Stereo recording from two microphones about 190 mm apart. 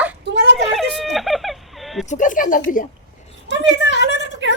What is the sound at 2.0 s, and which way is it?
Speech, 40° left (ahead or behind).